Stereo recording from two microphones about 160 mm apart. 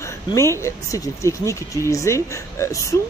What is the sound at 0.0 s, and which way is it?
Speech, 15° left (ahead or behind).